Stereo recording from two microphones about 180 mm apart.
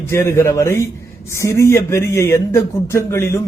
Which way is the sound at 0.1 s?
15° left (ahead or behind).